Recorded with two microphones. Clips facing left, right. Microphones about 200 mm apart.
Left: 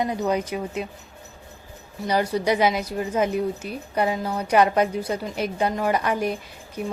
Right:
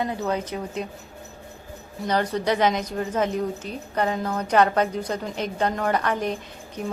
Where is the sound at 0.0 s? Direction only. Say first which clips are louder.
Left 2 dB; 15° left (ahead or behind).